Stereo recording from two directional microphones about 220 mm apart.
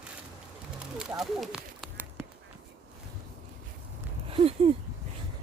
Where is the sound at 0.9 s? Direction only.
Centre (ahead or behind).